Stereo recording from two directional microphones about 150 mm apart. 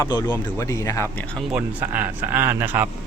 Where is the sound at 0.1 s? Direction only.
25° left (ahead or behind).